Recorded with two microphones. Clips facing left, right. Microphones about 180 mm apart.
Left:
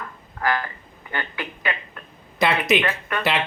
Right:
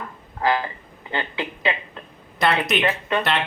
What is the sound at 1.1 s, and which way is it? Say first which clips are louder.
Speech: right 3 dB; 20° right (ahead or behind).